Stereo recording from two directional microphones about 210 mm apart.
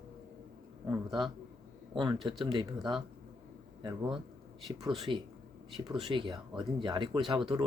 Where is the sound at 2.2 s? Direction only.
20° right (ahead or behind).